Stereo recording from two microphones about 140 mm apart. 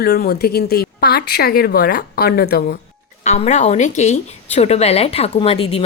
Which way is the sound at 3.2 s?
50° left (ahead or behind).